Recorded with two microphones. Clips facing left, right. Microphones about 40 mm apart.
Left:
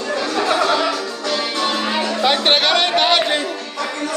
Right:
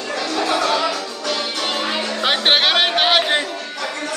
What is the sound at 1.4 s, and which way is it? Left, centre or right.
Music, left.